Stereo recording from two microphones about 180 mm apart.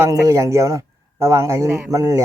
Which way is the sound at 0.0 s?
15° right (ahead or behind).